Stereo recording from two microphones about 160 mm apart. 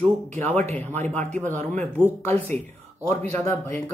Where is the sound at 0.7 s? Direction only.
10° left (ahead or behind).